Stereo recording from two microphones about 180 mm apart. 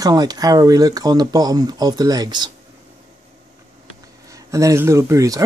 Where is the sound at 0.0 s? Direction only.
20° right (ahead or behind).